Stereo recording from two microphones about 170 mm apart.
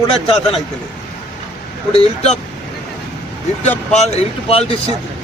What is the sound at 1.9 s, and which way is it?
Speech, 40° left (ahead or behind).